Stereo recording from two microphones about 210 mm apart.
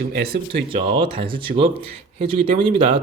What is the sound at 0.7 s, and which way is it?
Speech, 25° right (ahead or behind).